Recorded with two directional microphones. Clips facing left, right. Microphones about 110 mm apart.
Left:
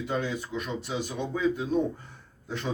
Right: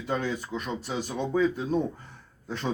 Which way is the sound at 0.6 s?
40° right (ahead or behind).